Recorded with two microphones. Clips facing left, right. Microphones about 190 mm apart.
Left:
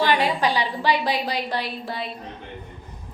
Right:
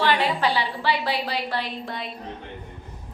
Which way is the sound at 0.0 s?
15° left (ahead or behind).